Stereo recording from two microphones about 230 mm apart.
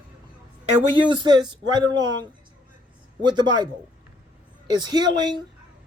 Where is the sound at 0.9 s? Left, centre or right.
Centre.